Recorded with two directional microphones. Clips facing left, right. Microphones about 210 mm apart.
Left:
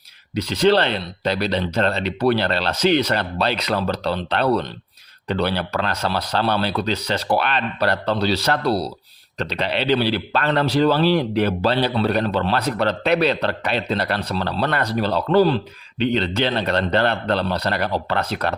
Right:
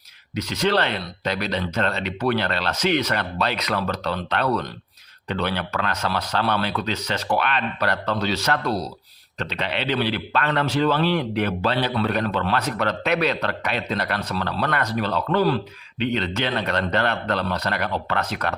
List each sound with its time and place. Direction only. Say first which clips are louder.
0.3 s speech: left 5 dB; 30° left (ahead or behind)